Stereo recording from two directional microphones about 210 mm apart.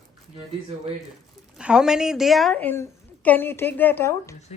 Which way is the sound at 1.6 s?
5° right (ahead or behind).